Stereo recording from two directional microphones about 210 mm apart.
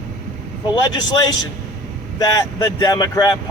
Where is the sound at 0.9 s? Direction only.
20° left (ahead or behind).